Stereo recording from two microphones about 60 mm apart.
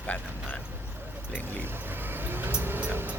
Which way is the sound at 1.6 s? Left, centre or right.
Right.